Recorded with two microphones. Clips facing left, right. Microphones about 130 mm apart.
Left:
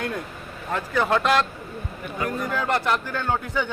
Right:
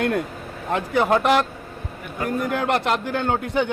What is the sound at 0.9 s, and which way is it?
Speech, 15° right (ahead or behind).